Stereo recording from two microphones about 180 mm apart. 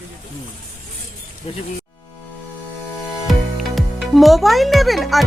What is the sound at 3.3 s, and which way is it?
Speech, centre (ahead or behind).